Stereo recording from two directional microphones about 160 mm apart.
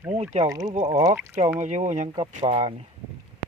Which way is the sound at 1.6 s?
50° right (ahead or behind).